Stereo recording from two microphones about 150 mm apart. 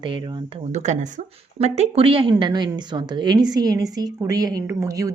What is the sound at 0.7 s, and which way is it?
A woman's voice, 50° right (ahead or behind).